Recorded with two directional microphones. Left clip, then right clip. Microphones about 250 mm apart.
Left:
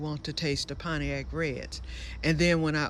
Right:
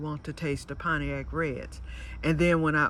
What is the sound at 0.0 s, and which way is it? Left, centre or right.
Speech, centre.